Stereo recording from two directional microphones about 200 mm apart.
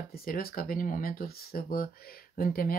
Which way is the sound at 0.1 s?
45° left (ahead or behind).